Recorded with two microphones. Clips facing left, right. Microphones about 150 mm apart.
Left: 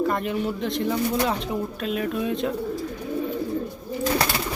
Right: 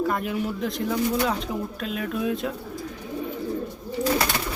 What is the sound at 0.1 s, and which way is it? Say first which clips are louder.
Speech: left 1 dB; centre (ahead or behind).